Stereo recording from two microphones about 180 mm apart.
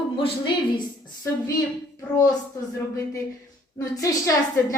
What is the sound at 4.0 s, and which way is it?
Speech, 20° left (ahead or behind).